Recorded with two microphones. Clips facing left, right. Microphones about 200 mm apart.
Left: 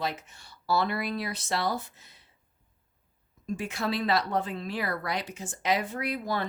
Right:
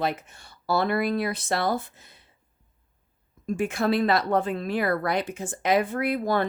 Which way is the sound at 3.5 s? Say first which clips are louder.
Right 7 dB; 50° right (ahead or behind).